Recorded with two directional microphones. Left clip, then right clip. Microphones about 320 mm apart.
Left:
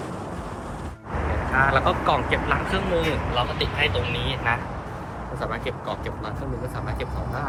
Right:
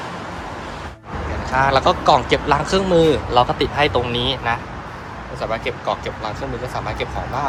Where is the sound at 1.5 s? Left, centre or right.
Centre.